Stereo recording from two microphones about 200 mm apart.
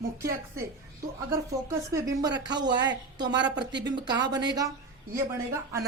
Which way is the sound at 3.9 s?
20° right (ahead or behind).